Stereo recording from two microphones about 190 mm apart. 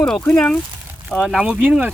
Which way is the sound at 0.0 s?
5° left (ahead or behind).